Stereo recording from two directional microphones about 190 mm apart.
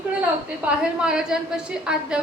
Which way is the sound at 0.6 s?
5° right (ahead or behind).